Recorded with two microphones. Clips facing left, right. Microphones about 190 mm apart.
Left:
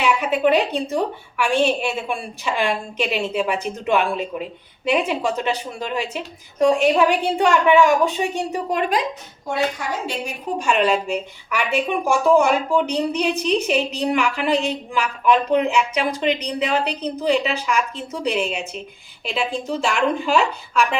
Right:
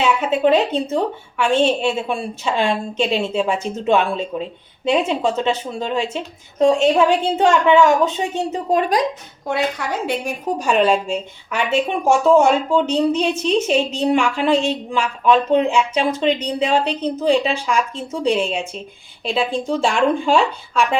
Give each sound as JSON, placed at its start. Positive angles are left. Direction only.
{"t": 0.0, "sound": "speech", "side_deg": -25}
{"t": 10.1, "sound": "a woman's voice", "side_deg": -55}
{"t": 10.6, "sound": "speech", "side_deg": -35}